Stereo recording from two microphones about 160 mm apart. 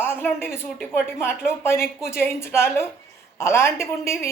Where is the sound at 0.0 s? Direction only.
15° left (ahead or behind).